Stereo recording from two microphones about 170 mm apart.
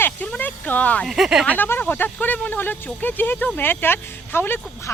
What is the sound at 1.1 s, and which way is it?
Speech, 5° right (ahead or behind).